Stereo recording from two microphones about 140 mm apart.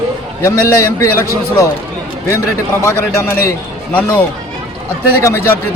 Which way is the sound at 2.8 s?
20° left (ahead or behind).